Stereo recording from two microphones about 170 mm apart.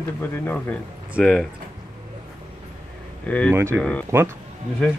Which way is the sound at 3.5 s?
15° right (ahead or behind).